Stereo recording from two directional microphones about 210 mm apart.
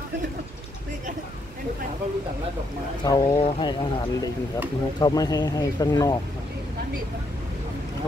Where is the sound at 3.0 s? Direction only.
25° left (ahead or behind).